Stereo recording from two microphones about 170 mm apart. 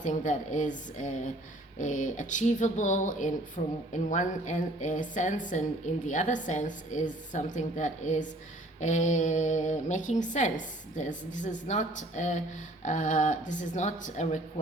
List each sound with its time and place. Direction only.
0.0 s a woman's voice: 45° left (ahead or behind)